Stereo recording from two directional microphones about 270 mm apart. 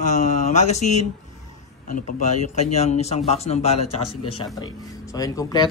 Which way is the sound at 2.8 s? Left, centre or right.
Left.